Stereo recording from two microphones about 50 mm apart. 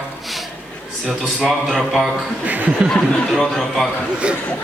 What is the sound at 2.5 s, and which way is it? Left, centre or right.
Speech, right.